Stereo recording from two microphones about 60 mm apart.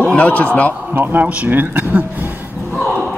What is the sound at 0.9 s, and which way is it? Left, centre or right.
Speech, right.